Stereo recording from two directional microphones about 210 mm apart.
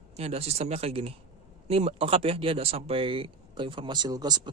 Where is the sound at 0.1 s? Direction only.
30° right (ahead or behind).